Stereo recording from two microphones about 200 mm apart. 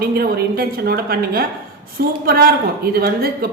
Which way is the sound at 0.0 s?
50° right (ahead or behind).